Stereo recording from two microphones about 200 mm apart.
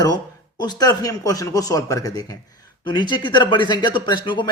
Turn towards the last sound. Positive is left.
turn(degrees=20)  # may be behind; listen again after turning